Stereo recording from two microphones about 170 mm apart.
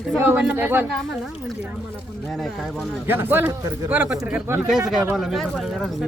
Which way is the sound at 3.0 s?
15° right (ahead or behind).